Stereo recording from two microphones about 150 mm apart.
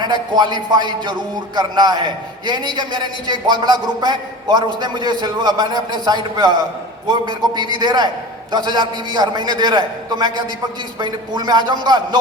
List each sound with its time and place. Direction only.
0.0 s a man's voice: 30° right (ahead or behind)